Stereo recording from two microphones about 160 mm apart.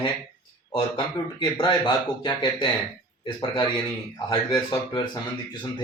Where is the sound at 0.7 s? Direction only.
30° left (ahead or behind).